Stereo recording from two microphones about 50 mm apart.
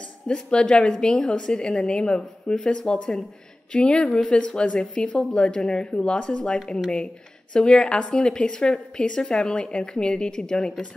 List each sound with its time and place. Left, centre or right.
0.3 s speech: centre